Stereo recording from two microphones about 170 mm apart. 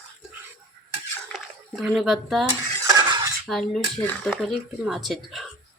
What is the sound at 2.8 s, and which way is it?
Cutlery, 20° right (ahead or behind).